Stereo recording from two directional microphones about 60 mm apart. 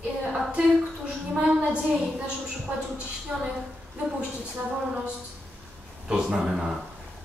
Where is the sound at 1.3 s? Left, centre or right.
Centre.